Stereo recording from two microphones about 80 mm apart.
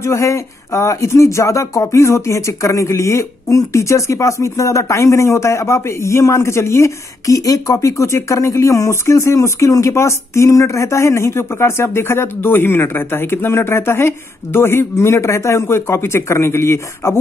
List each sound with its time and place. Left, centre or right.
0.0 s speech: left